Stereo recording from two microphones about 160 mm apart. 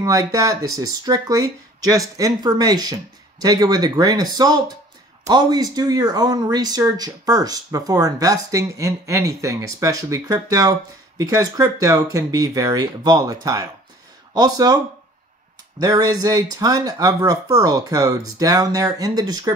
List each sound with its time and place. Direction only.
0.0 s speech: 20° right (ahead or behind)
15.8 s speech: 25° right (ahead or behind)